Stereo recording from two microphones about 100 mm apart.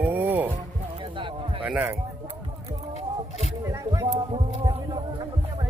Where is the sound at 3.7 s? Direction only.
40° right (ahead or behind).